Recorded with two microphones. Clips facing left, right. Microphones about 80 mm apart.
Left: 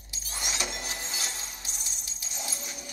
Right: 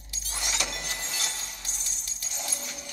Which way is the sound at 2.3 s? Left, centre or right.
Centre.